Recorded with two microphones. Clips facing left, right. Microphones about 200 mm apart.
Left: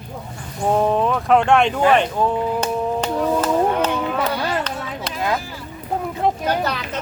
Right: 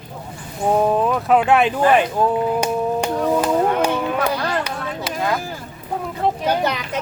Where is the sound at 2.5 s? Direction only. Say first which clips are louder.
Right 1 dB; 10° right (ahead or behind).